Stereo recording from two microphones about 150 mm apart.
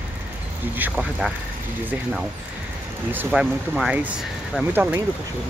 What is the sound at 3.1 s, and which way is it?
Speech, 10° right (ahead or behind).